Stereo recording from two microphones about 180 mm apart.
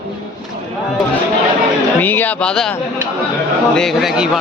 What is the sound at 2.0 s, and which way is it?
Speech, 10° left (ahead or behind).